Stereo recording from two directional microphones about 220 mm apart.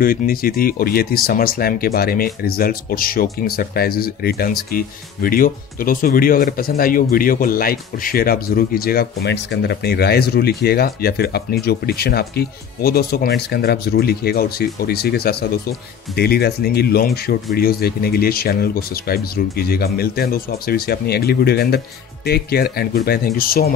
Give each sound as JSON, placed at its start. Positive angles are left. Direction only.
{"t": 0.0, "sound": "speech", "side_deg": 40}